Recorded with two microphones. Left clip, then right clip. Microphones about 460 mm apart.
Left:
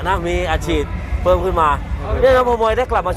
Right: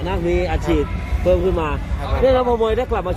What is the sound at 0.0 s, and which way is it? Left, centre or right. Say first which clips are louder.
Speech: left 2 dB; left.